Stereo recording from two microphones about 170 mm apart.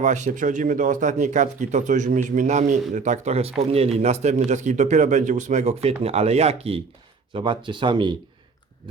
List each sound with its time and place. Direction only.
0.0 s speech: 45° right (ahead or behind); by 8.1 s 30° right (ahead or behind)